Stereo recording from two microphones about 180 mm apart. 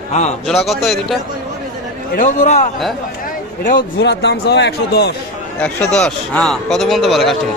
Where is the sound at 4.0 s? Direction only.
70° left (ahead or behind).